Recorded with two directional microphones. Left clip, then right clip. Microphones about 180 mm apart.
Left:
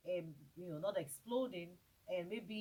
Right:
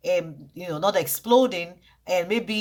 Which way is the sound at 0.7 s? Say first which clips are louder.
Right 18 dB; 35° right (ahead or behind).